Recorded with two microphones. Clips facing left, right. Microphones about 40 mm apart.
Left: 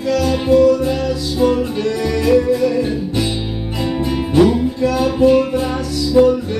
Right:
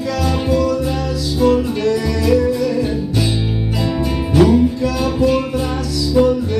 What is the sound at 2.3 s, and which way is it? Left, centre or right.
Music, left.